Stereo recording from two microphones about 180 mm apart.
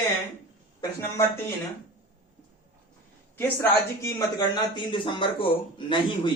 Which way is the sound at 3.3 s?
10° left (ahead or behind).